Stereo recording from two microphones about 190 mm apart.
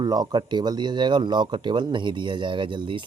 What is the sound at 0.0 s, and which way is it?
Speech, 20° right (ahead or behind).